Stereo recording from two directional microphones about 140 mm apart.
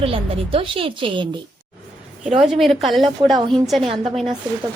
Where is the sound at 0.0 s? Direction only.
40° right (ahead or behind).